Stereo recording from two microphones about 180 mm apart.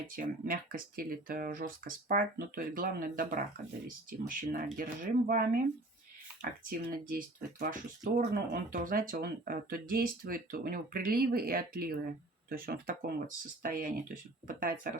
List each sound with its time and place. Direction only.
0.2 s speech: 50° right (ahead or behind)